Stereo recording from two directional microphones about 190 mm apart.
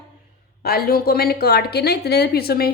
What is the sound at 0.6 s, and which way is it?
A woman's voice, 55° left (ahead or behind).